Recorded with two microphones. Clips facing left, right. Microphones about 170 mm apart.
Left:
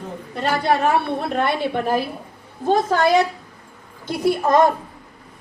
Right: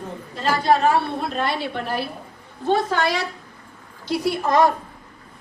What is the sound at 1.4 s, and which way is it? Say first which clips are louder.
Speech: left 5 dB; 55° left (ahead or behind).